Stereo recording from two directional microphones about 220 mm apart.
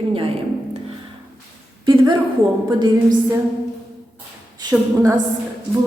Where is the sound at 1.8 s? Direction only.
20° right (ahead or behind).